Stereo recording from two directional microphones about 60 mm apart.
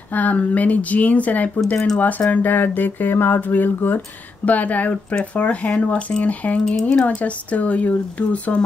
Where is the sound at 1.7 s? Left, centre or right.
Centre.